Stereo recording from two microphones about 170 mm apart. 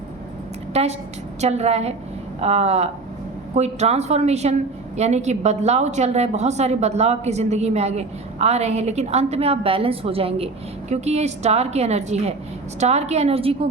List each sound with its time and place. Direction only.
0.7 s a woman's voice: 40° right (ahead or behind)